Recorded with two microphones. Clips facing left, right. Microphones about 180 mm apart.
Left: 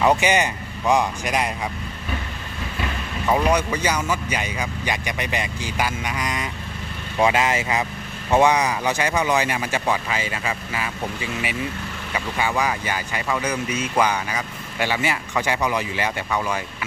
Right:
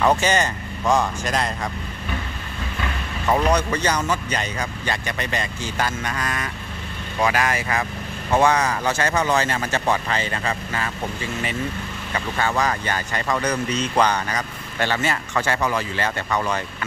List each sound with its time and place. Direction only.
0.0 s speech: 15° left (ahead or behind)
3.3 s speech: 10° left (ahead or behind)